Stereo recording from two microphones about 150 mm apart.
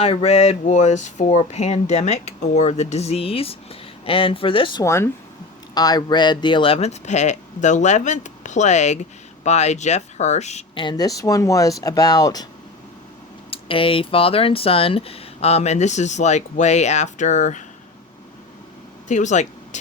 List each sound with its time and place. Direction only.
0.0 s speech: 40° left (ahead or behind)
4.8 s speech: 20° left (ahead or behind); by 10.6 s 50° left (ahead or behind)
10.8 s speech: 30° left (ahead or behind)
13.5 s speech: 35° left (ahead or behind); by 17.6 s 55° left (ahead or behind)
19.0 s speech: 55° left (ahead or behind)